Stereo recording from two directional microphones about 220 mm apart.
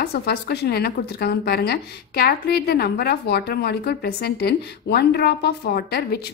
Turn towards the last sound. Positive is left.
turn(degrees=45)  # may be behind; listen again after turning